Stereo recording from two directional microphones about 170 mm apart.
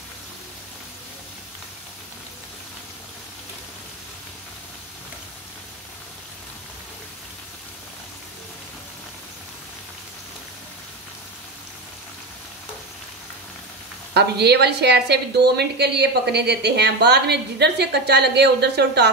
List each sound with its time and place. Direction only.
14.1 s a woman's voice: 75° right (ahead or behind)